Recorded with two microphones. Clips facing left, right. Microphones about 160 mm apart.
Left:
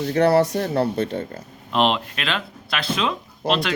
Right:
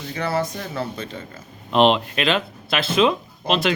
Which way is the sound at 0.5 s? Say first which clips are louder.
Left 8 dB; 40° left (ahead or behind).